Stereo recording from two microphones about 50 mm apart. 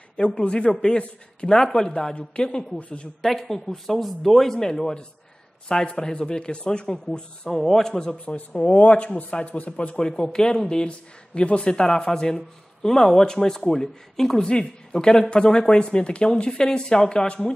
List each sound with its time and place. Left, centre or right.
0.2 s speech: left
3.2 s speech: centre
8.5 s speech: left